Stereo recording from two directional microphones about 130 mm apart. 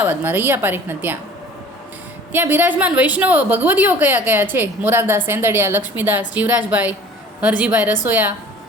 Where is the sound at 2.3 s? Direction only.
15° right (ahead or behind).